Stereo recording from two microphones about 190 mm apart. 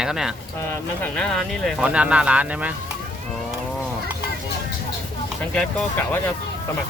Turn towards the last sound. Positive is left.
turn(degrees=5)  # may be behind; listen again after turning